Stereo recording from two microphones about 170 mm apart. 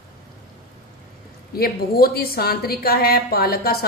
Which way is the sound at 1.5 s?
65° left (ahead or behind).